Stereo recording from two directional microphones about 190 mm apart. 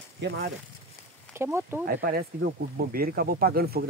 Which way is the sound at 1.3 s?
15° right (ahead or behind).